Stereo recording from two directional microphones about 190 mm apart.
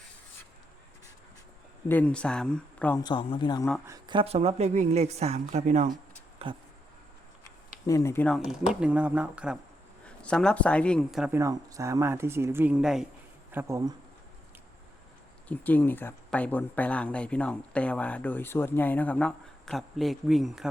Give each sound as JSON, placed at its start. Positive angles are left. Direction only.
{"t": 1.9, "sound": "speech", "side_deg": 5}
{"t": 3.0, "sound": "speech", "side_deg": 25}
{"t": 3.8, "sound": "a woman's voice", "side_deg": -20}
{"t": 7.9, "sound": "speech", "side_deg": 15}
{"t": 8.7, "sound": "speech", "side_deg": -5}
{"t": 10.2, "sound": "speech", "side_deg": 5}
{"t": 11.3, "sound": "speech", "side_deg": -15}
{"t": 13.5, "sound": "speech", "side_deg": -15}
{"t": 15.4, "sound": "speech", "side_deg": 10}